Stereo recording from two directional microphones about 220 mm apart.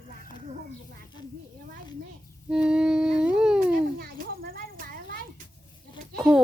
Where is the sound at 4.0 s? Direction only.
40° right (ahead or behind).